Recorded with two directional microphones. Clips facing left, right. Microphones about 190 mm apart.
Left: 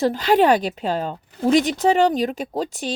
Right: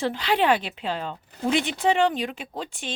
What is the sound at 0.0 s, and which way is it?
A woman's voice, 45° left (ahead or behind).